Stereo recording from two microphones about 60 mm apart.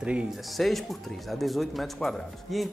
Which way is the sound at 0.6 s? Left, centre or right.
Centre.